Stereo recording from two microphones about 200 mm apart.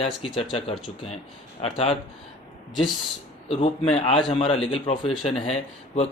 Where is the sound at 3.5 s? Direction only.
30° left (ahead or behind).